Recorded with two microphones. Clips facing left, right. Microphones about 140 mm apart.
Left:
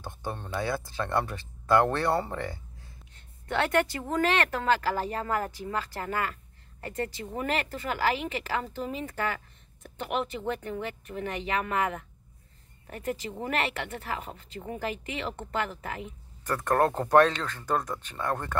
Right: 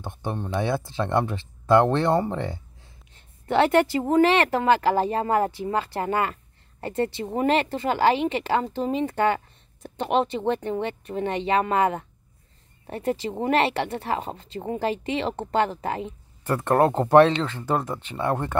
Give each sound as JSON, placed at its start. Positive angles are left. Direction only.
{"t": 0.0, "sound": "a sound", "side_deg": -20}
{"t": 0.6, "sound": "speech", "side_deg": -25}
{"t": 17.6, "sound": "speech", "side_deg": -10}